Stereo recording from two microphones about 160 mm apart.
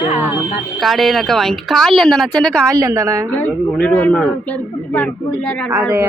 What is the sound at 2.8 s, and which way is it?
Speech, 20° right (ahead or behind).